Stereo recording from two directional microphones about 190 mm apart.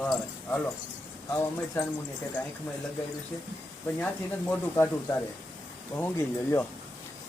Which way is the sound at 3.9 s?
10° left (ahead or behind).